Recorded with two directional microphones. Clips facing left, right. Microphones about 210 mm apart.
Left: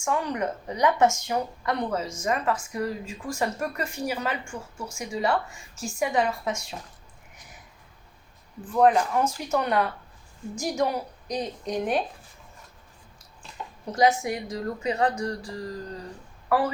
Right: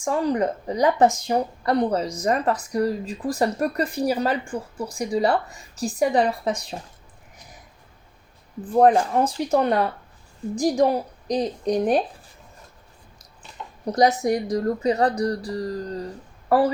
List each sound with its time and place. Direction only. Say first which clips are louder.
0.0 s speech: right 5 dB; 35° right (ahead or behind)
8.6 s speech: right 4 dB; 35° right (ahead or behind)
13.8 s speech: right 3 dB; 35° right (ahead or behind)